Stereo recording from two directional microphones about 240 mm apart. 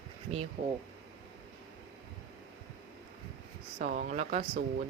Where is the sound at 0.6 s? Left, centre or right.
Right.